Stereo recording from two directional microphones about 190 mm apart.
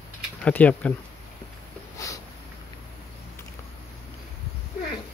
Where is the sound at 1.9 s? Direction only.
15° left (ahead or behind).